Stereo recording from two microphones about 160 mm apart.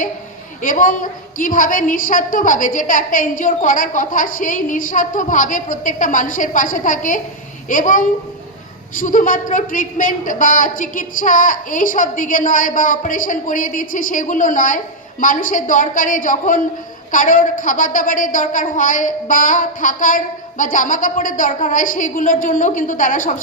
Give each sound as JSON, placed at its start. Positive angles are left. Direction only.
{"t": 0.6, "sound": "a woman's voice", "side_deg": 55}